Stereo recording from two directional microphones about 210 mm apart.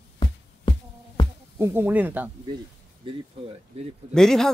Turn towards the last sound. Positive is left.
turn(degrees=0)  # may be behind; listen again after turning